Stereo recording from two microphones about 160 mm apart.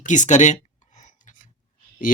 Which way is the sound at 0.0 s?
50° left (ahead or behind).